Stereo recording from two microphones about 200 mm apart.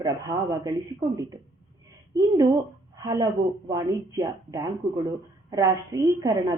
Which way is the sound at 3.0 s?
20° right (ahead or behind).